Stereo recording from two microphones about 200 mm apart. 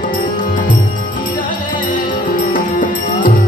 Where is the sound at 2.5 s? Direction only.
40° left (ahead or behind).